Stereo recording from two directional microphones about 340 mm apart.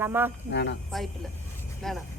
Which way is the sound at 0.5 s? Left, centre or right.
Left.